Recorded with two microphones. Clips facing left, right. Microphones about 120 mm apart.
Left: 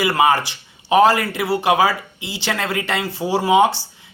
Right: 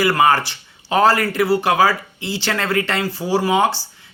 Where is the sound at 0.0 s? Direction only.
20° left (ahead or behind).